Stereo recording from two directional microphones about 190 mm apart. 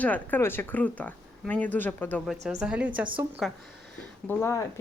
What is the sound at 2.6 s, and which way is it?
Speech, 5° right (ahead or behind).